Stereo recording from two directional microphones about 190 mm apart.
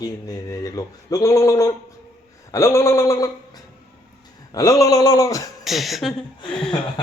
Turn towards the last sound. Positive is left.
turn(degrees=5)  # may be behind; listen again after turning